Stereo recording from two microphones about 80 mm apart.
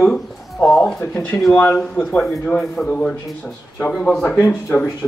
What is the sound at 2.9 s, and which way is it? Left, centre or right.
Speech, centre.